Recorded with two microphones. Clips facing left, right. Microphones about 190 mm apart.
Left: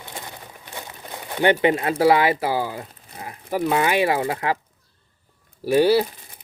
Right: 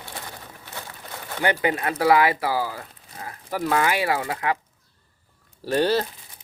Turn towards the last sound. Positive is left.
turn(degrees=10)  # may be behind; listen again after turning